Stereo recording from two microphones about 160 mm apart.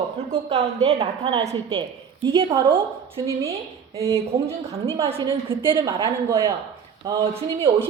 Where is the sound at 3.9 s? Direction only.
20° right (ahead or behind).